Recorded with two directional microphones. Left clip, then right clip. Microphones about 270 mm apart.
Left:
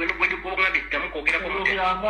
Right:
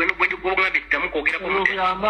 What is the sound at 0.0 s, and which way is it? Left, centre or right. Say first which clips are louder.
Speech: right 3 dB; right.